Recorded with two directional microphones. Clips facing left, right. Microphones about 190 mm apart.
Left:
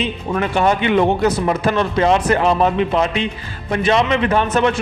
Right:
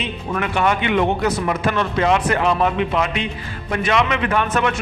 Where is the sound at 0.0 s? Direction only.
35° left (ahead or behind).